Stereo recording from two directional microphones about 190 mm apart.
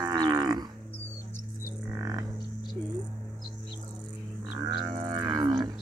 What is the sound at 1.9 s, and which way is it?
Didgeridoo, 20° right (ahead or behind).